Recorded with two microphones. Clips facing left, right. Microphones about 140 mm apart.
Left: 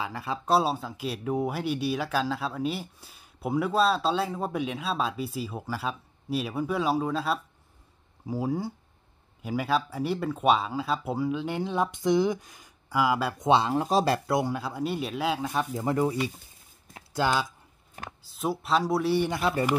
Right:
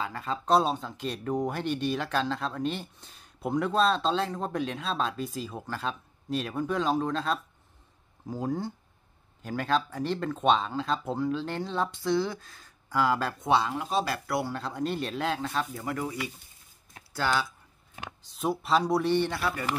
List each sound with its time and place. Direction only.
0.0 s speech: 10° left (ahead or behind)
13.7 s speech: 35° left (ahead or behind); by 17.5 s 20° left (ahead or behind)
18.2 s speech: centre (ahead or behind)